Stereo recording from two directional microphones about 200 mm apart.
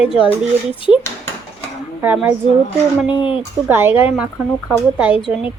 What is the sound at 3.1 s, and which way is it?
Speech, 25° left (ahead or behind).